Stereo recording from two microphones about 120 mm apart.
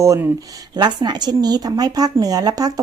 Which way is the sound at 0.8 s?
35° right (ahead or behind).